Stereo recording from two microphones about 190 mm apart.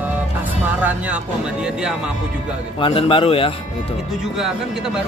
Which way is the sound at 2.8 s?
25° left (ahead or behind).